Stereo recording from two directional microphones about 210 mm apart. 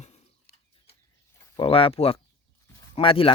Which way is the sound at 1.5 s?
25° left (ahead or behind).